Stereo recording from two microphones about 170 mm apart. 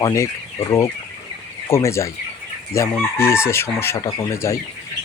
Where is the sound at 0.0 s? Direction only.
15° left (ahead or behind).